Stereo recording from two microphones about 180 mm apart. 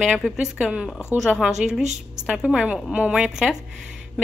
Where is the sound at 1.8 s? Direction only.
40° right (ahead or behind).